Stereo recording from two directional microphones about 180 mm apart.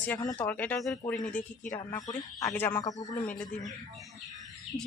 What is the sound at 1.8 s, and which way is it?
Speech, 25° left (ahead or behind).